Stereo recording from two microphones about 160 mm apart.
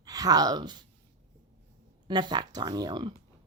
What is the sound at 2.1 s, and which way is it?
Speech, 25° right (ahead or behind).